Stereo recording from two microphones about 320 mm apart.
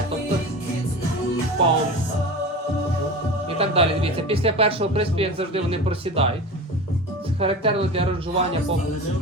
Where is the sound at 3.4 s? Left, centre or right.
Centre.